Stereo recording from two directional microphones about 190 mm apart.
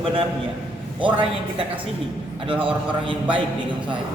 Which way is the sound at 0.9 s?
5° right (ahead or behind).